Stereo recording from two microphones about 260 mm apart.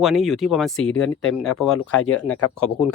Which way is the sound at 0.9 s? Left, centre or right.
Left.